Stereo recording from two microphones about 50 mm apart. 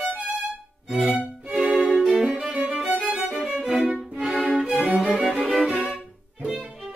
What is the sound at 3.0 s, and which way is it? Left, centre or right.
Music, right.